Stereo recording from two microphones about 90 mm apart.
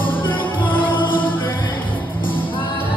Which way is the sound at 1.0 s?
20° left (ahead or behind).